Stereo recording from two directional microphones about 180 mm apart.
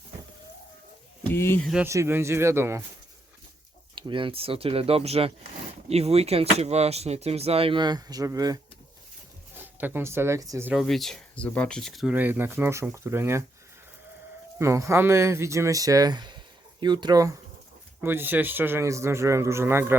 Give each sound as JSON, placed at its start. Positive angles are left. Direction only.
{"t": 1.2, "sound": "speech", "side_deg": 10}
{"t": 1.6, "sound": "a man's voice", "side_deg": -5}
{"t": 3.9, "sound": "speech", "side_deg": -25}
{"t": 9.7, "sound": "a man's voice", "side_deg": -10}
{"t": 10.8, "sound": "speech", "side_deg": 0}
{"t": 14.6, "sound": "a man's voice", "side_deg": -15}